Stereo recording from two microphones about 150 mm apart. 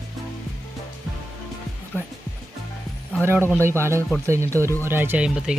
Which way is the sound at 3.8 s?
20° right (ahead or behind).